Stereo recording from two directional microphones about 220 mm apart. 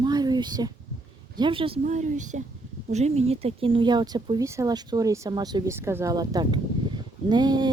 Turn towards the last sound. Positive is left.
turn(degrees=-20)  # may be behind; listen again after turning